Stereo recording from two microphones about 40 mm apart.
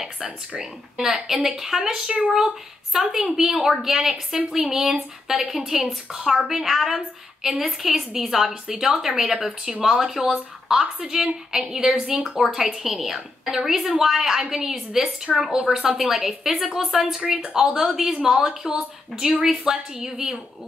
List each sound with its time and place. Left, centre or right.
0.6 s a woman's voice: centre
17.2 s a woman's voice: right
17.7 s a woman's voice: centre